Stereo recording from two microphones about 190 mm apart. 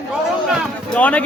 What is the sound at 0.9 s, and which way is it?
Speech, 5° left (ahead or behind).